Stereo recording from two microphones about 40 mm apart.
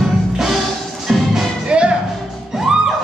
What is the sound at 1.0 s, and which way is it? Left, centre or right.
Music, centre.